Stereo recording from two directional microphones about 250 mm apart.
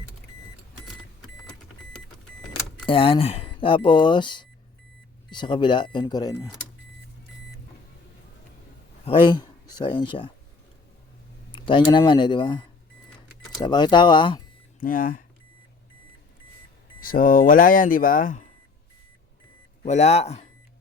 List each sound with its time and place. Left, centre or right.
2.8 s speech: left
9.0 s speech: centre
11.5 s speech: centre
14.8 s speech: left
17.0 s speech: left
19.8 s speech: left